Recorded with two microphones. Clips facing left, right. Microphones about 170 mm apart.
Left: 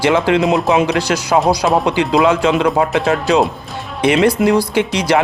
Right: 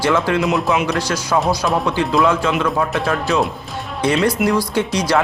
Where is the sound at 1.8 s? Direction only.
90° left.